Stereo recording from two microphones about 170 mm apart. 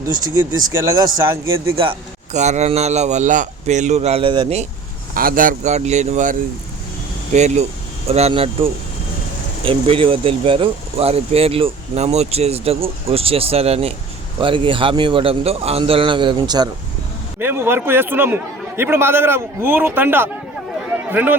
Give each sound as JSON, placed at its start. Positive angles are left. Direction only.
{"t": 0.1, "sound": "speech", "side_deg": -20}
{"t": 1.7, "sound": "speech", "side_deg": -30}
{"t": 5.1, "sound": "speech", "side_deg": -55}
{"t": 7.3, "sound": "speech", "side_deg": -40}
{"t": 9.6, "sound": "speech", "side_deg": -30}
{"t": 17.4, "sound": "a man's voice", "side_deg": -15}